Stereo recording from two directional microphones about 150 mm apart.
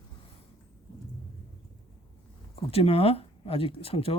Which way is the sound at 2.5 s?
40° left (ahead or behind).